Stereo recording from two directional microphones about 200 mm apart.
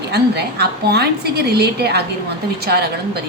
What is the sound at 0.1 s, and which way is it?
A woman's voice, 55° right (ahead or behind).